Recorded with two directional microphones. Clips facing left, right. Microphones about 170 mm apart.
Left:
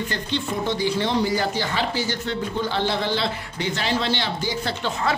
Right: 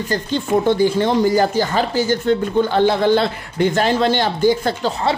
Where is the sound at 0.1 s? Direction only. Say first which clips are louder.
Right 8 dB; 45° right (ahead or behind).